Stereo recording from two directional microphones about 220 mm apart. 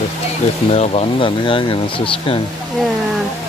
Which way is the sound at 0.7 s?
25° left (ahead or behind).